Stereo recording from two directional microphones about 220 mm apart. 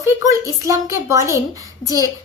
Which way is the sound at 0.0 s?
15° right (ahead or behind).